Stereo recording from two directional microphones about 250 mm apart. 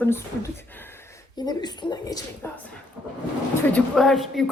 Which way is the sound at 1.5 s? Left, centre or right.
Centre.